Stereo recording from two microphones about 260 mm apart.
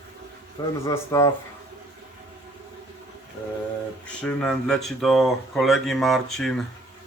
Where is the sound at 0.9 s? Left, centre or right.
Centre.